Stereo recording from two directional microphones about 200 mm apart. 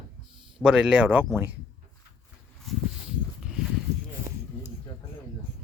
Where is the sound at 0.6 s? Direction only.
5° right (ahead or behind).